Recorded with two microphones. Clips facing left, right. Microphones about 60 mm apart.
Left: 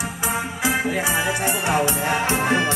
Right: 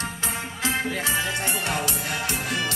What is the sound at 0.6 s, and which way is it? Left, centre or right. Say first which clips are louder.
Music: left 3 dB; centre.